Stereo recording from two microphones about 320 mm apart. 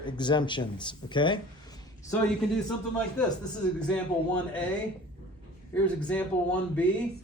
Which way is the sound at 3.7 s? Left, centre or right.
Centre.